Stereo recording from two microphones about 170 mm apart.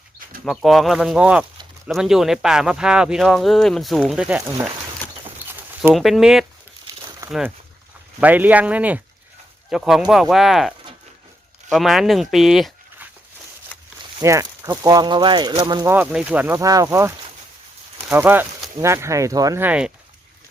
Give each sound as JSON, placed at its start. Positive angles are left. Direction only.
{"t": 0.4, "sound": "speech", "side_deg": 0}
{"t": 5.4, "sound": "a sound", "side_deg": -10}
{"t": 5.9, "sound": "speech", "side_deg": 0}
{"t": 14.2, "sound": "speech", "side_deg": -20}
{"t": 15.9, "sound": "speech", "side_deg": -10}